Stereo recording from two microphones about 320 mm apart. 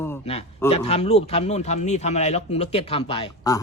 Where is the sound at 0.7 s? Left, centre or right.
Centre.